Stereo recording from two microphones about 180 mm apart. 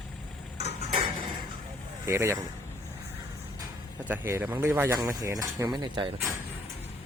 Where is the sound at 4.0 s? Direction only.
10° right (ahead or behind).